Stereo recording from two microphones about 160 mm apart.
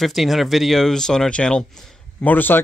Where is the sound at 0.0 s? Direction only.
Centre (ahead or behind).